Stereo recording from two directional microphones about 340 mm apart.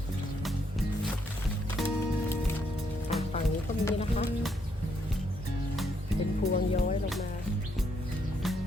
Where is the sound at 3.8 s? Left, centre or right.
Centre.